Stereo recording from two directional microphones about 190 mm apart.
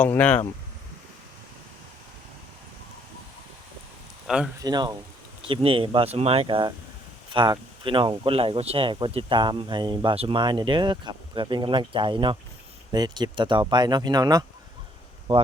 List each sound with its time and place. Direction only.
0.0 s speech: 10° left (ahead or behind)
4.3 s speech: centre (ahead or behind)
4.6 s speech: 20° right (ahead or behind)